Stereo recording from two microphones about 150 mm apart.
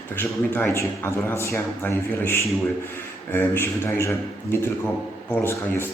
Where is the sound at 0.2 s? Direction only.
15° left (ahead or behind).